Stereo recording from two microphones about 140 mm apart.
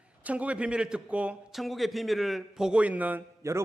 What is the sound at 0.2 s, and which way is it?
A man's voice, 10° right (ahead or behind).